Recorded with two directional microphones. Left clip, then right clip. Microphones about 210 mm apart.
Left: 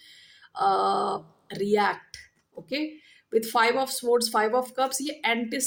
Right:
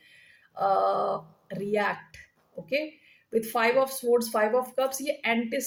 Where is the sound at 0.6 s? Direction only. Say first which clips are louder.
Left 1 dB; 45° left (ahead or behind).